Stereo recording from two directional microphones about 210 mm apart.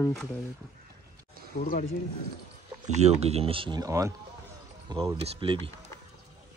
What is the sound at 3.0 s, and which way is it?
Speech, 30° right (ahead or behind).